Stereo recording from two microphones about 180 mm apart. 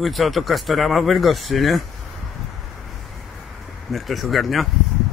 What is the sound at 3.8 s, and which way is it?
Speech, centre (ahead or behind).